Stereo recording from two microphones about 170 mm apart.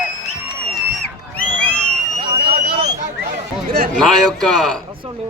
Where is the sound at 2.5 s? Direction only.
55° right (ahead or behind).